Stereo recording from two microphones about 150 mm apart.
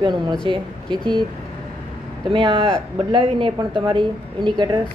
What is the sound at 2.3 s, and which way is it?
Speech, 35° right (ahead or behind).